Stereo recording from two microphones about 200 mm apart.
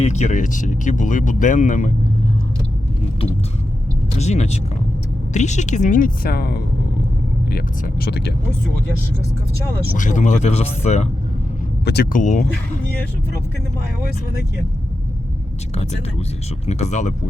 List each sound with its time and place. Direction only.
0.0 s speech: 35° left (ahead or behind)
4.2 s speech: 35° left (ahead or behind); by 8.3 s 55° left (ahead or behind)
9.9 s speech: 40° left (ahead or behind)
11.9 s speech: 55° left (ahead or behind)
12.2 s speech: 40° left (ahead or behind)
15.7 s speech: 35° left (ahead or behind)